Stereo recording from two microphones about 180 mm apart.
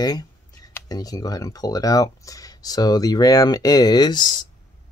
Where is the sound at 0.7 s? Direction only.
20° left (ahead or behind).